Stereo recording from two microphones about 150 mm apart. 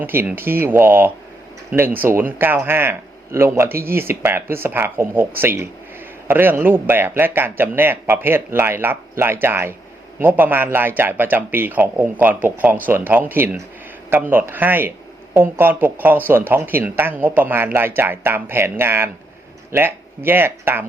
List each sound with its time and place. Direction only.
0.0 s speech: 15° right (ahead or behind)